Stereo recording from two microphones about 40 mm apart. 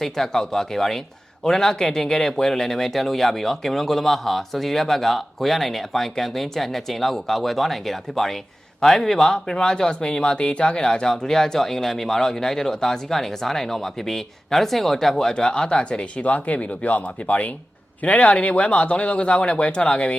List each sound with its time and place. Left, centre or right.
0.0 s speech: centre; by 20.1 s left